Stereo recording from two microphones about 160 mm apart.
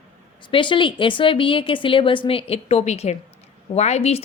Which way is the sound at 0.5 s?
30° left (ahead or behind).